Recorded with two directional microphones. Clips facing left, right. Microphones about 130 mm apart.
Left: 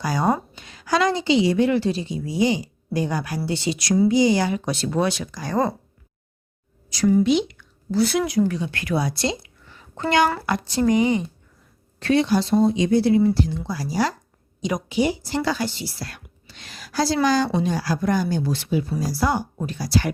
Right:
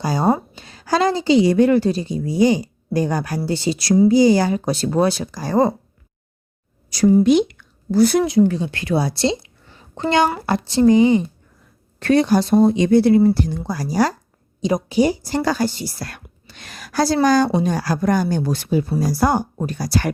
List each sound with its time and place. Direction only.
0.0 s a woman's voice: 30° right (ahead or behind)
6.9 s speech: 40° right (ahead or behind)
8.2 s a woman's voice: 30° right (ahead or behind)
11.9 s a woman's voice: 50° right (ahead or behind)